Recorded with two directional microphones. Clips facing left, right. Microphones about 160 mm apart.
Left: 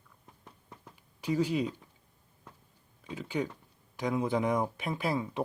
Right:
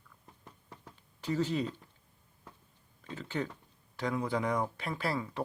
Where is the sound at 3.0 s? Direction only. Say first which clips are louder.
Left 3 dB; 10° left (ahead or behind).